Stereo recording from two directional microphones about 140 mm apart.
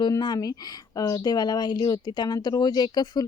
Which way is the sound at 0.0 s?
30° left (ahead or behind).